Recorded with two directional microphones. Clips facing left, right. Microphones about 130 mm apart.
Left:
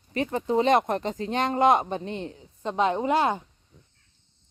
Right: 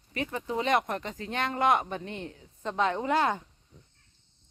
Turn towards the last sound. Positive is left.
turn(degrees=20)  # may be behind; listen again after turning